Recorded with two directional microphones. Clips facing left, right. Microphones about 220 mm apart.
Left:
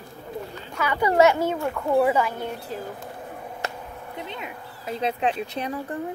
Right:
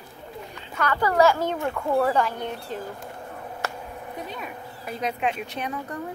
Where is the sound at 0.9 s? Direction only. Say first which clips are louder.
Left 2 dB; 20° left (ahead or behind).